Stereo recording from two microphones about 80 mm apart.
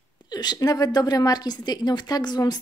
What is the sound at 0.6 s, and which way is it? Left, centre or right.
Speech, left.